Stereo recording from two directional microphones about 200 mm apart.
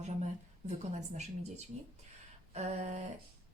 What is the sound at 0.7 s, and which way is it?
A woman's voice, 35° right (ahead or behind).